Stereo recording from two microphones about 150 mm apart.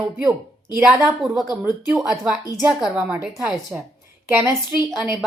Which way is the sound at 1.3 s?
Centre (ahead or behind).